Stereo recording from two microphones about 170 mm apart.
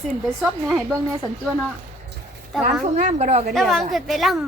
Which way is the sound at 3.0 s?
45° right (ahead or behind).